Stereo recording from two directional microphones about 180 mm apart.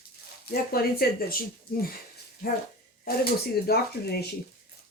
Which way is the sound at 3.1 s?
60° left (ahead or behind).